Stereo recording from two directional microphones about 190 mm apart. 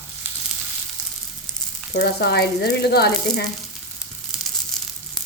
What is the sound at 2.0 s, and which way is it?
Frying, 60° left (ahead or behind).